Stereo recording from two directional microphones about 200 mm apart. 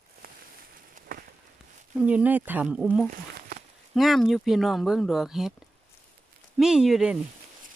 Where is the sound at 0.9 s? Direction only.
45° right (ahead or behind).